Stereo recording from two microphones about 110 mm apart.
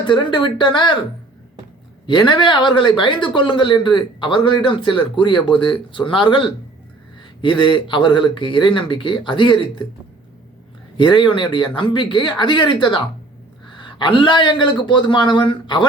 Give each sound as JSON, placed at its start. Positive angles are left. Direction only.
{"t": 0.1, "sound": "speech", "side_deg": 45}
{"t": 2.0, "sound": "speech", "side_deg": 45}
{"t": 7.4, "sound": "speech", "side_deg": 45}
{"t": 10.9, "sound": "speech", "side_deg": 45}